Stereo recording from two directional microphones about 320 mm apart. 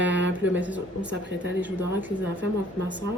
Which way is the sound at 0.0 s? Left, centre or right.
Right.